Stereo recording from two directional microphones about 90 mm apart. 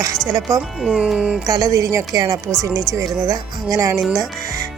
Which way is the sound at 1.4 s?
40° right (ahead or behind).